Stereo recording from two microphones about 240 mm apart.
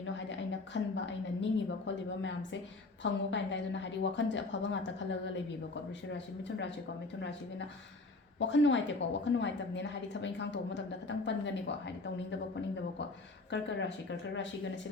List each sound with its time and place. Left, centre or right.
0.0 s a sound: left
3.0 s a woman's voice: left
8.4 s a woman's voice: left
13.5 s a woman's voice: left